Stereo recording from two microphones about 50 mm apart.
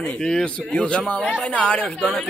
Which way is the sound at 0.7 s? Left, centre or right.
Left.